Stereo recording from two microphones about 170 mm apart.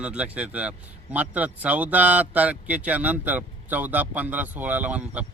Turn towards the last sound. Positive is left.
turn(degrees=-10)  # may be behind; listen again after turning